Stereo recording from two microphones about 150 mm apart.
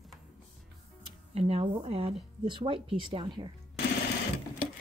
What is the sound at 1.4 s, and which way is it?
A woman's voice, 40° right (ahead or behind).